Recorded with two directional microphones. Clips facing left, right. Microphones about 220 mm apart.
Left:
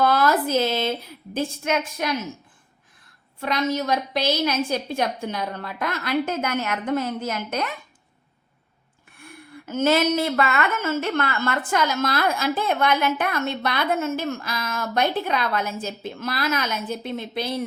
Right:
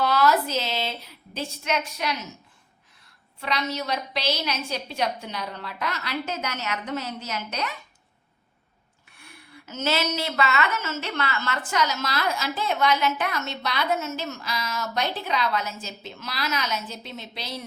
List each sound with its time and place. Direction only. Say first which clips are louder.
0.0 s a woman's voice: left 2 dB; 50° left (ahead or behind)
3.4 s a woman's voice: left 5 dB; 50° left (ahead or behind)
9.1 s a woman's voice: left 7 dB; 50° left (ahead or behind)